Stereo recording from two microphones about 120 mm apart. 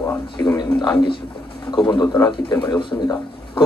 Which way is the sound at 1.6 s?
40° left (ahead or behind).